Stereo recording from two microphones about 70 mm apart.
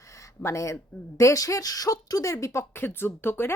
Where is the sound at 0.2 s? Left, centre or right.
Left.